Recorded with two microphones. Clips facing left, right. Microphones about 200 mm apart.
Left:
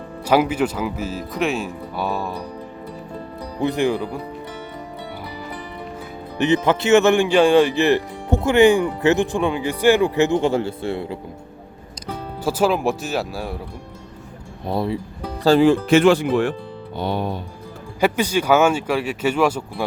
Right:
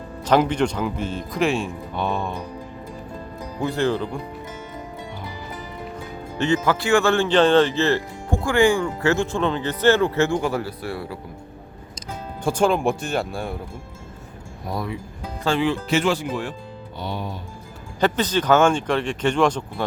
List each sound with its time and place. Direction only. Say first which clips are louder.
0.3 s speech: left 1 dB; 5° left (ahead or behind)
3.6 s speech: left 2 dB; 15° left (ahead or behind)
6.3 s speech: left 3 dB; 20° left (ahead or behind)
12.5 s speech: left 1 dB; 5° left (ahead or behind)
14.7 s speech: left 6 dB; 30° left (ahead or behind)
15.4 s speech: left 8 dB; 40° left (ahead or behind); by 17.3 s 60° left (ahead or behind)
18.0 s speech: left 2 dB; 10° left (ahead or behind)